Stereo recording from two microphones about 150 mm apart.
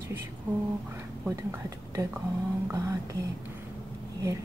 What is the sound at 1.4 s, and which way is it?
Speech, 15° right (ahead or behind).